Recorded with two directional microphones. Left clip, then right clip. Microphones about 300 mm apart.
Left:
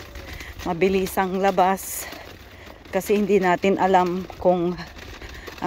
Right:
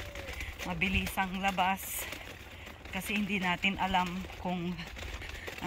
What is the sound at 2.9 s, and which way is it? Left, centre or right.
Speech, centre.